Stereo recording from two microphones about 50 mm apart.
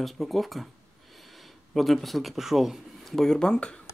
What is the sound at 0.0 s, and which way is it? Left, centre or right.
Speech, centre.